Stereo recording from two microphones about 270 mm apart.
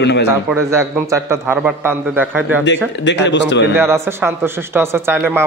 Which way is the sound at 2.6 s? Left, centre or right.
Left.